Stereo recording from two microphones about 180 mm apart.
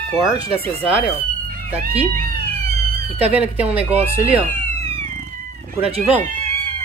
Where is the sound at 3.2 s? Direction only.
10° right (ahead or behind).